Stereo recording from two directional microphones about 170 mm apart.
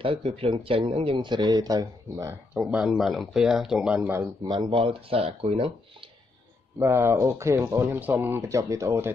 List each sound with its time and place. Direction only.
0.0 s speech: 30° right (ahead or behind)
2.6 s speech: 5° right (ahead or behind)
4.5 s speech: 30° right (ahead or behind)
6.8 s speech: 15° right (ahead or behind)